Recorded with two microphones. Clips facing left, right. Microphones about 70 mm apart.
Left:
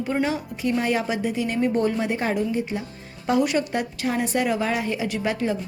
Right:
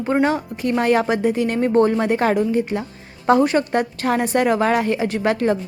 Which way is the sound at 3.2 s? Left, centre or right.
Right.